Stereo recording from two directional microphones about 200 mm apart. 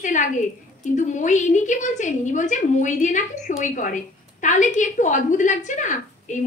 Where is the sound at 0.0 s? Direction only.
40° left (ahead or behind).